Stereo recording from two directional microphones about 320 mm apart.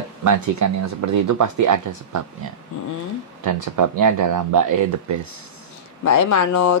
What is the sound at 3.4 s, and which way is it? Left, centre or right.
Speech, right.